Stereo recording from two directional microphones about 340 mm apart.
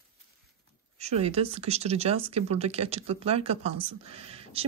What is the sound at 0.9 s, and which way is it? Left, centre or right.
Speech, centre.